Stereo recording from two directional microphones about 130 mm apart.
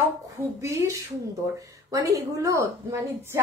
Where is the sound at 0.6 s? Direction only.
20° right (ahead or behind).